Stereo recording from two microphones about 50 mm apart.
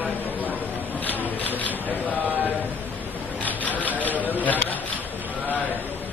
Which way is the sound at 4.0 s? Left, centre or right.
Left.